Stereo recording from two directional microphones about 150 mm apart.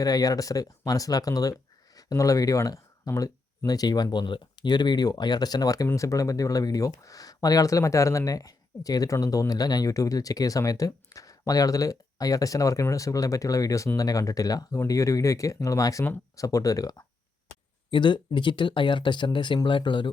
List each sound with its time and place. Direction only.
0.0 s speech: 25° left (ahead or behind)